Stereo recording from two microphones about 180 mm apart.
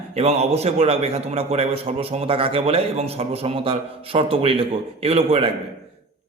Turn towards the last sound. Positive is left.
turn(degrees=-35)  # may be behind; listen again after turning